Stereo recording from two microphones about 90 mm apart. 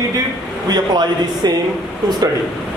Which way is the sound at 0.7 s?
50° right (ahead or behind).